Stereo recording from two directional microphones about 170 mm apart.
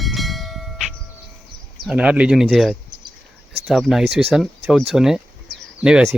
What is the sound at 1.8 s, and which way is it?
Speech, 5° right (ahead or behind).